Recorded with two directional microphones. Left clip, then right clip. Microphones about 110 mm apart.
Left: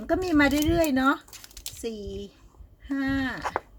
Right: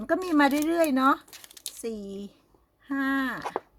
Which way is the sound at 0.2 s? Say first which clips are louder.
Left 2 dB; 55° right (ahead or behind).